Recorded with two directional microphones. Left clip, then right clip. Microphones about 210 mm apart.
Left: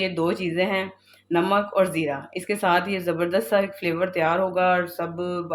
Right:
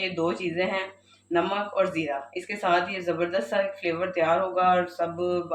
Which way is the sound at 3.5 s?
50° left (ahead or behind).